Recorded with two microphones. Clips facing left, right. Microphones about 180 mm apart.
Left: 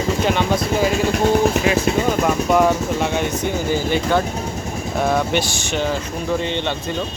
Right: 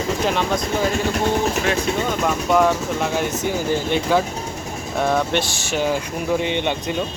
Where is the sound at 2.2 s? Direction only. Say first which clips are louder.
Right 1 dB; 5° left (ahead or behind); by 6.9 s 15° right (ahead or behind).